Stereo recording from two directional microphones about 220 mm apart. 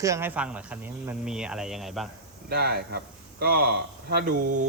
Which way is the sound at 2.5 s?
45° right (ahead or behind).